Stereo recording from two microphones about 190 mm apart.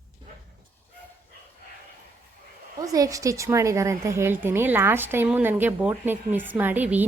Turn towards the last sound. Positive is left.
turn(degrees=-10)  # may be behind; listen again after turning